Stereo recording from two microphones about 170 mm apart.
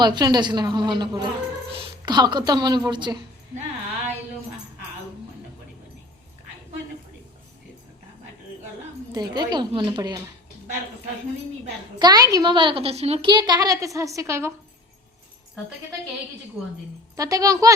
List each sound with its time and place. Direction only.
0.0 s speech: 25° right (ahead or behind)
9.1 s speech: 25° right (ahead or behind)
11.9 s speech: 25° right (ahead or behind)
17.2 s speech: 20° right (ahead or behind)